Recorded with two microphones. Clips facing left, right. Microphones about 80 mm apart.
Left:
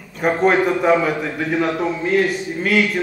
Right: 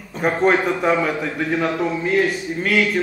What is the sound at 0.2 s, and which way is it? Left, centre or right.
A man's voice, centre.